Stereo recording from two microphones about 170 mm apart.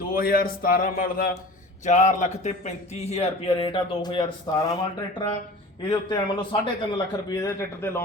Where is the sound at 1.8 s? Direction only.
45° left (ahead or behind); by 4.8 s 25° left (ahead or behind).